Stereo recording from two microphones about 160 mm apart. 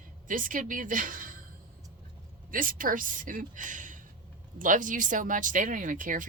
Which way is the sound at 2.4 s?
60° right (ahead or behind).